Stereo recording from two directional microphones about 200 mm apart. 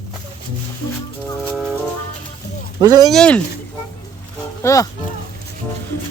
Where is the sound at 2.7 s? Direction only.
20° right (ahead or behind).